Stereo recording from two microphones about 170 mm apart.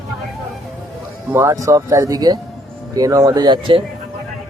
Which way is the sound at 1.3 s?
15° right (ahead or behind).